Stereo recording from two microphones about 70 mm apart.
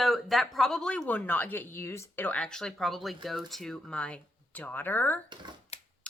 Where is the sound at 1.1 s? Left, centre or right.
Left.